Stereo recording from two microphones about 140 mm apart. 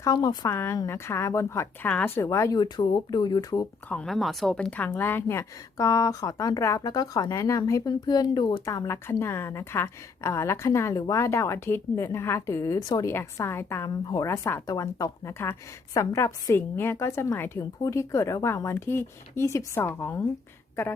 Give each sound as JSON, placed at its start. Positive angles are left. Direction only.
{"t": 0.0, "sound": "speech", "side_deg": 25}
{"t": 3.8, "sound": "a woman's voice", "side_deg": 5}